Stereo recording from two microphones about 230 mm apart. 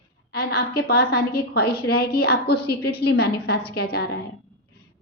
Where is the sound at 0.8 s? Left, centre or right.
Left.